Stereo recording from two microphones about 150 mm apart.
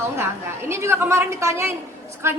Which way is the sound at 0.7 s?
15° right (ahead or behind).